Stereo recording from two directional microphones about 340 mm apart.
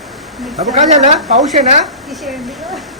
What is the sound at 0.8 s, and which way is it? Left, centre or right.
Speech, right.